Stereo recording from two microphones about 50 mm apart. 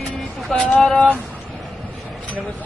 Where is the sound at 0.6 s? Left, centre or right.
Centre.